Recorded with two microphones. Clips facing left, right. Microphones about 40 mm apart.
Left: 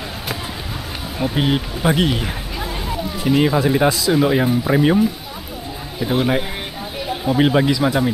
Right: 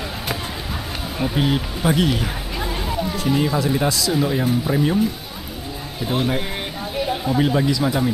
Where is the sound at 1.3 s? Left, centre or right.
Centre.